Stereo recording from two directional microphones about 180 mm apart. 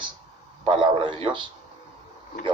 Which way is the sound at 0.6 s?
25° right (ahead or behind).